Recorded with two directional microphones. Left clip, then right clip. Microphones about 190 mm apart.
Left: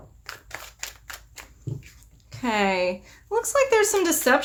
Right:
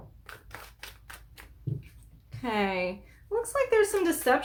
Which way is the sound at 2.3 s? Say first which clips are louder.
Left 6 dB; 25° left (ahead or behind).